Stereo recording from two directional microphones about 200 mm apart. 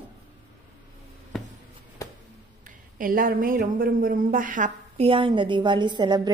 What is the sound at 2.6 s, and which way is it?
A woman's voice, 45° right (ahead or behind).